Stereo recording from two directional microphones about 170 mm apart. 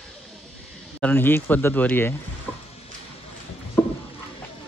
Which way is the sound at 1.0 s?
10° left (ahead or behind).